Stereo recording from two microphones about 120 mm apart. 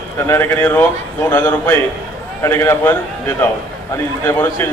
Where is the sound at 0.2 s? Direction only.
20° left (ahead or behind).